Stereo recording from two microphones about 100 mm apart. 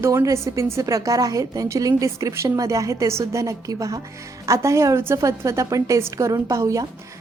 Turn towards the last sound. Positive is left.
turn(degrees=-30)  # may be behind; listen again after turning